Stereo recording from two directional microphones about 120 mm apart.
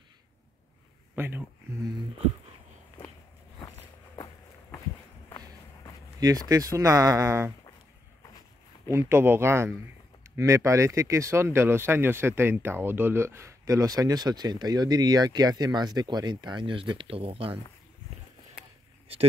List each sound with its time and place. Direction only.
1.1 s speech: 20° right (ahead or behind)
6.1 s speech: 30° right (ahead or behind)
8.9 s speech: 20° right (ahead or behind); by 17.6 s 50° right (ahead or behind)
19.1 s speech: 50° right (ahead or behind)